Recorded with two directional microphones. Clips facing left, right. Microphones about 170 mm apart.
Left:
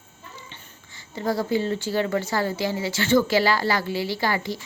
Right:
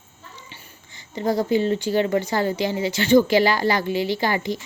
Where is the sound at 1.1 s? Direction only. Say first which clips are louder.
Right 3 dB; 20° right (ahead or behind).